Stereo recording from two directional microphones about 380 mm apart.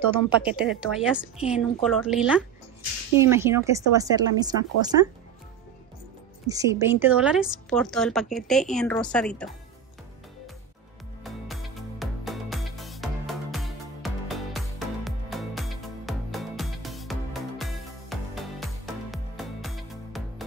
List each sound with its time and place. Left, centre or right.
0.1 s speech: centre
6.4 s speech: centre
11.2 s music: centre